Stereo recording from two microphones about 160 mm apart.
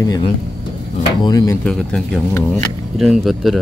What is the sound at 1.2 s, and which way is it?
Speech, 20° left (ahead or behind).